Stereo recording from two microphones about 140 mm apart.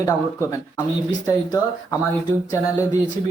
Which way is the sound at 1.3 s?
25° left (ahead or behind).